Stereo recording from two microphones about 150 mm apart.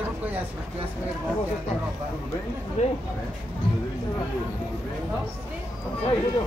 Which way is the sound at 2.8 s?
45° left (ahead or behind).